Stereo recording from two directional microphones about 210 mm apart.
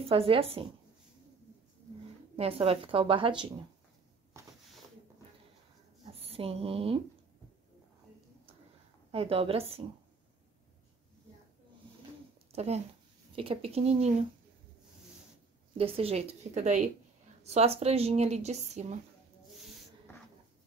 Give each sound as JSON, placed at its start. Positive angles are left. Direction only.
{"t": 0.1, "sound": "a woman's voice", "side_deg": -25}
{"t": 2.3, "sound": "a woman's voice", "side_deg": -25}
{"t": 6.0, "sound": "a sound", "side_deg": -30}
{"t": 9.1, "sound": "a woman's voice", "side_deg": -25}
{"t": 12.5, "sound": "a woman's voice", "side_deg": -30}
{"t": 15.8, "sound": "a woman's voice", "side_deg": -25}